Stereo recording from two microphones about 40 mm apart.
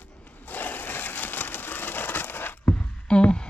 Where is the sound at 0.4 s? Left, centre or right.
Left.